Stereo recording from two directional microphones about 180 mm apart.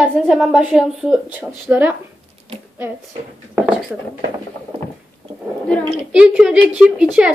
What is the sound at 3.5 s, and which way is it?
Speech, centre (ahead or behind).